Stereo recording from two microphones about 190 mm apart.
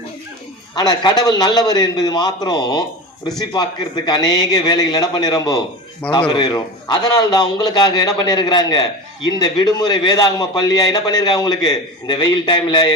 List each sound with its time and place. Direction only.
0.8 s a man's voice: 20° left (ahead or behind)